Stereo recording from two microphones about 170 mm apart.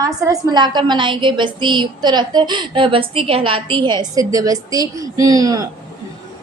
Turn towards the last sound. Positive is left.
turn(degrees=-20)  # may be behind; listen again after turning